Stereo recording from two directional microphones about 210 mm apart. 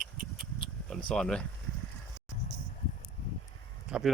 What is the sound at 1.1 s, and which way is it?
Speech, 5° left (ahead or behind).